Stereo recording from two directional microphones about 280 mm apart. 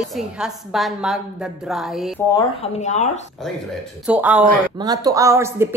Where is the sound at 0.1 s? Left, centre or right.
Centre.